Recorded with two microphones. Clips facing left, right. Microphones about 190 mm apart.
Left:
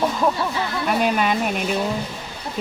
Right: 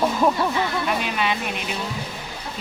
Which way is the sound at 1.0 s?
45° left (ahead or behind).